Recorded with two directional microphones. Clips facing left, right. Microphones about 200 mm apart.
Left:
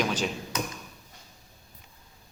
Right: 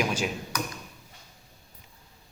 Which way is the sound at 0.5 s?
25° left (ahead or behind).